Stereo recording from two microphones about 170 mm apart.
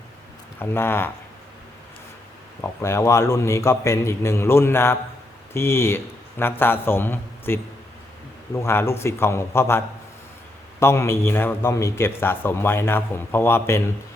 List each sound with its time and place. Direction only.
0.6 s a man's voice: 15° left (ahead or behind)
2.6 s a man's voice: 15° left (ahead or behind)